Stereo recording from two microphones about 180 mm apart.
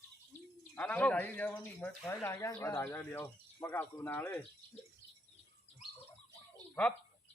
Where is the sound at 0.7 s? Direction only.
10° left (ahead or behind).